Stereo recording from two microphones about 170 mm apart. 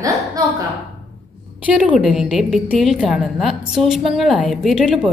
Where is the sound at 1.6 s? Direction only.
5° right (ahead or behind).